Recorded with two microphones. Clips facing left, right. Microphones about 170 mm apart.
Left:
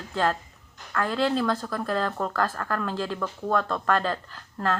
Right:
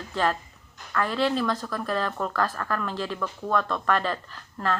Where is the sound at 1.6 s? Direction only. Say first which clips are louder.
Left 1 dB; 30° left (ahead or behind).